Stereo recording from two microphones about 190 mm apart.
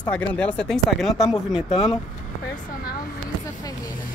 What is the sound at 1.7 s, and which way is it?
Speech, 30° left (ahead or behind).